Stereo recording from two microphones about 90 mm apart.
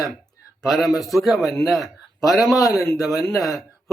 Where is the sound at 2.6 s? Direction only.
40° left (ahead or behind).